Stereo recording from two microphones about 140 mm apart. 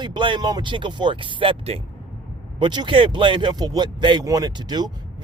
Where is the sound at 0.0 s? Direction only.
35° right (ahead or behind).